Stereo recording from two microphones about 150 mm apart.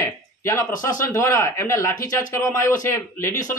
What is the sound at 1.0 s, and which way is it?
A man's voice, 20° left (ahead or behind).